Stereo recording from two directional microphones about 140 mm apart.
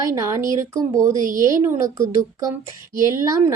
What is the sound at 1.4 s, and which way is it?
A woman's voice, 20° right (ahead or behind).